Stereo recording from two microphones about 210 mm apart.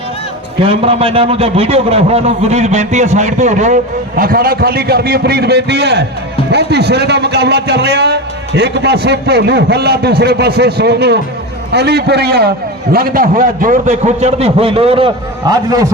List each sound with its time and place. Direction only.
0.6 s a man's voice: 25° right (ahead or behind)